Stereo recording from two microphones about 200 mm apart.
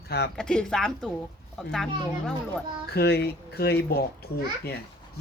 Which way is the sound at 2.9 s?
55° left (ahead or behind).